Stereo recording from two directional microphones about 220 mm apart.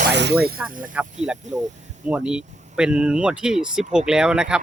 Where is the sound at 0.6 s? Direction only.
5° right (ahead or behind).